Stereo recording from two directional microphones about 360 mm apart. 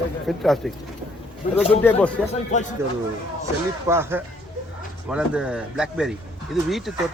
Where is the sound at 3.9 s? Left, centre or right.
Centre.